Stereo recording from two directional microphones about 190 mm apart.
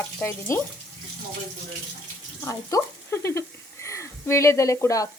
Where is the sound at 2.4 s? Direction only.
15° left (ahead or behind).